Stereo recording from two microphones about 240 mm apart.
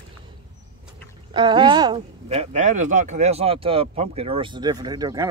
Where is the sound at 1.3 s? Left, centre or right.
Centre.